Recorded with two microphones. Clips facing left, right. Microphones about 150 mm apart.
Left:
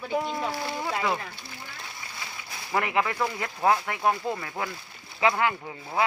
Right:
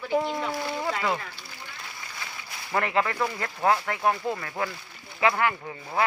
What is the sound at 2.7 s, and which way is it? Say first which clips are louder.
Speech: right 1 dB; 10° left (ahead or behind).